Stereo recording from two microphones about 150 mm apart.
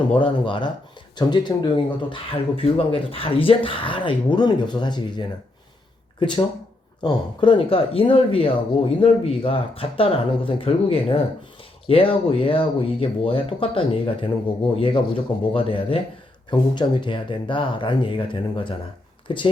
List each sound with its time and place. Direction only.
0.1 s speech: 35° left (ahead or behind)